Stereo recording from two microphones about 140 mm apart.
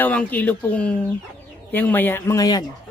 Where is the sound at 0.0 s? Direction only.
10° left (ahead or behind); by 2.6 s 30° left (ahead or behind).